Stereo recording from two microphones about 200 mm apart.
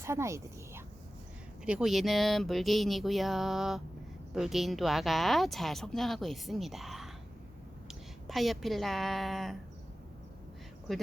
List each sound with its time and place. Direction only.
0.0 s a woman's voice: 15° right (ahead or behind)
10.9 s speech: centre (ahead or behind)